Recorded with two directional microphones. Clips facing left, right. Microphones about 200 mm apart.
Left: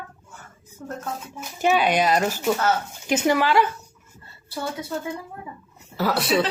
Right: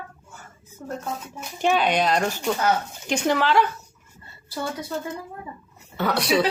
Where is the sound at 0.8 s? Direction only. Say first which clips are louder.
Right 1 dB; 10° right (ahead or behind).